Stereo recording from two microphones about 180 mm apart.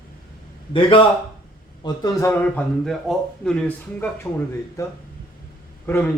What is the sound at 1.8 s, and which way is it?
Speech, 20° left (ahead or behind).